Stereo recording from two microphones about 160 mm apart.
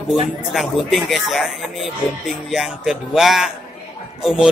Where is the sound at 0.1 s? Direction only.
Centre (ahead or behind).